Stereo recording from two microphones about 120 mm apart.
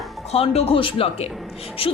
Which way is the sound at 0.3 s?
55° left (ahead or behind).